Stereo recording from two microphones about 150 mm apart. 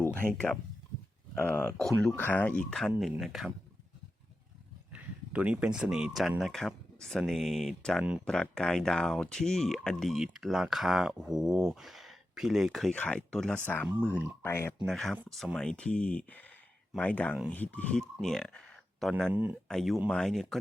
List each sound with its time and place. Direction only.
0.2 s speech: 5° left (ahead or behind)
4.9 s speech: 10° right (ahead or behind); by 14.8 s 15° left (ahead or behind)
14.8 s speech: centre (ahead or behind)
18.2 s a sound: 5° left (ahead or behind)
19.3 s speech: 10° right (ahead or behind)
19.6 s speech: centre (ahead or behind)